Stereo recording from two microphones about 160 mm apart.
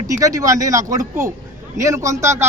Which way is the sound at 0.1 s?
20° right (ahead or behind).